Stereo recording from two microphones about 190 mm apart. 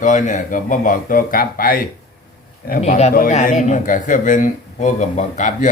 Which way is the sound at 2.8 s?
35° left (ahead or behind).